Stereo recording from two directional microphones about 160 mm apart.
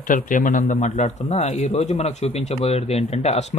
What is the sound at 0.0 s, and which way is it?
A man's voice, 55° left (ahead or behind).